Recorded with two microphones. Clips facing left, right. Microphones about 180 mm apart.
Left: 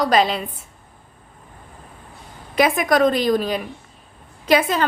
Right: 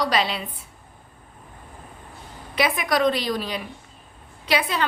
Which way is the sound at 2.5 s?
45° left (ahead or behind).